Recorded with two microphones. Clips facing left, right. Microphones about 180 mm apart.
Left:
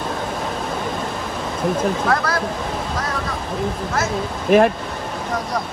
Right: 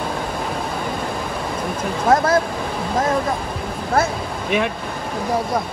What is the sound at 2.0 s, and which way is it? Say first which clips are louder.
Speech: right 5 dB; 20° right (ahead or behind).